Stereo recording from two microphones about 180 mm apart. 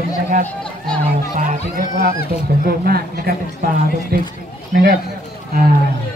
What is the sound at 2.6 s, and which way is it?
Speech, 55° right (ahead or behind).